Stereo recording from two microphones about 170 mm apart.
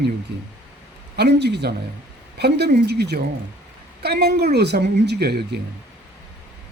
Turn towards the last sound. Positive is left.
turn(degrees=-70)  # may be behind; listen again after turning